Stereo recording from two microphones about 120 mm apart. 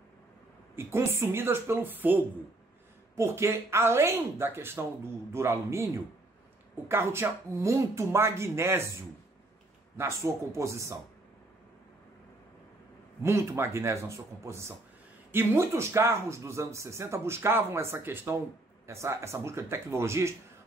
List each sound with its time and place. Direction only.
0.7 s speech: 20° right (ahead or behind)
6.9 s speech: 20° right (ahead or behind)
9.9 s speech: 25° right (ahead or behind)
13.2 s speech: 20° right (ahead or behind)